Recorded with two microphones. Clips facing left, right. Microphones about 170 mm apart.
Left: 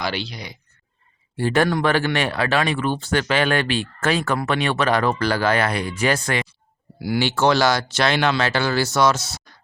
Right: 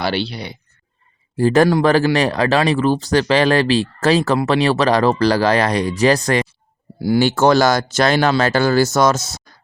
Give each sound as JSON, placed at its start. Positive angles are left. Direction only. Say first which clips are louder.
{"t": 0.0, "sound": "speech", "louder": "right 6 dB", "side_deg": -30}